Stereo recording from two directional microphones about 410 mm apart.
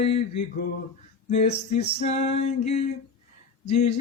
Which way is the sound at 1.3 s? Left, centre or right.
Centre.